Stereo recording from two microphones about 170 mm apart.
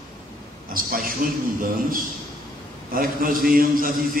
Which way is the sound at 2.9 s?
60° right (ahead or behind).